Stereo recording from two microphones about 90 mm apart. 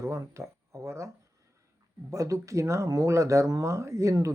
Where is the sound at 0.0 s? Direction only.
35° right (ahead or behind).